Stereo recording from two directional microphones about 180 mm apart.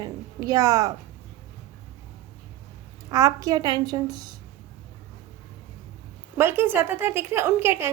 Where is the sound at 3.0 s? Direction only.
20° right (ahead or behind).